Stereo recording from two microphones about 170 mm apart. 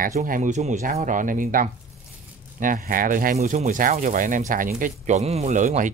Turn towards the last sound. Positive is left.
turn(degrees=-45)  # may be behind; listen again after turning